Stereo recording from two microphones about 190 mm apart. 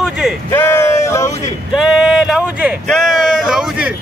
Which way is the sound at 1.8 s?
Centre (ahead or behind).